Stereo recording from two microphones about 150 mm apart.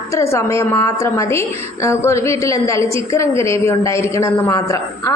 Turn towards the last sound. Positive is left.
turn(degrees=20)  # may be behind; listen again after turning